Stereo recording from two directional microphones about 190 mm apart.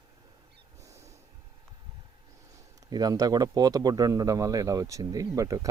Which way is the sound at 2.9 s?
20° right (ahead or behind).